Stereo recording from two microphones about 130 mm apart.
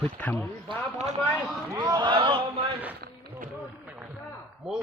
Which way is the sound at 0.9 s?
60° right (ahead or behind).